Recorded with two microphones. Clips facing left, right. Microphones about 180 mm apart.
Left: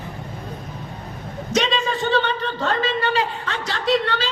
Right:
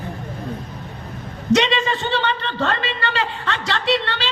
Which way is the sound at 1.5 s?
70° right (ahead or behind).